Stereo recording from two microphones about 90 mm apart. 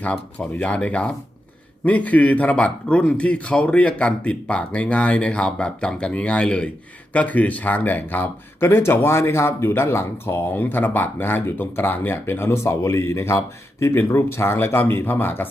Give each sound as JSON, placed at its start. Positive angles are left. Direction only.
{"t": 0.0, "sound": "a man's voice", "side_deg": 15}